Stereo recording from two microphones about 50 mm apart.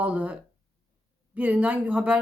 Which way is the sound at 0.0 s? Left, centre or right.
Right.